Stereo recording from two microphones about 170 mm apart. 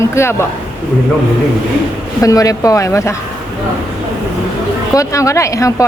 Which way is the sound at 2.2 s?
20° left (ahead or behind).